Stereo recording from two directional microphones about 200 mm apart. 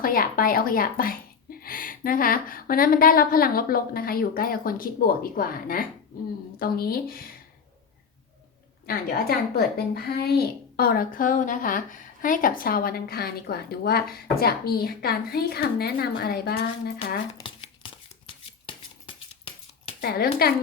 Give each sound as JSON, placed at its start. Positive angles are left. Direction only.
{"t": 0.0, "sound": "speech", "side_deg": 45}
{"t": 8.9, "sound": "speech", "side_deg": 45}
{"t": 17.3, "sound": "a sound", "side_deg": 25}
{"t": 20.0, "sound": "speech", "side_deg": 50}